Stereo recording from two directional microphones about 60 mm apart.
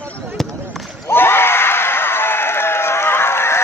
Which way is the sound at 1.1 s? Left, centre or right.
Left.